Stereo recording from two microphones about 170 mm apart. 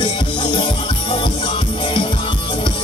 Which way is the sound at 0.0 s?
25° left (ahead or behind).